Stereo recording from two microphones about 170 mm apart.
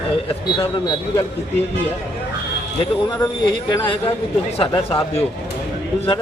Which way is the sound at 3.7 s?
25° left (ahead or behind).